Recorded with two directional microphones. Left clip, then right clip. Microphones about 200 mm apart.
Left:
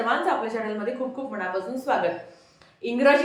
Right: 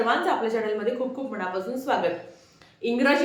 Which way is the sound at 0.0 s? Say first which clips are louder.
Right 1 dB; 5° right (ahead or behind).